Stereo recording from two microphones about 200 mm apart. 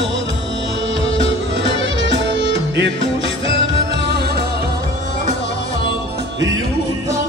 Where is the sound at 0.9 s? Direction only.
70° right (ahead or behind).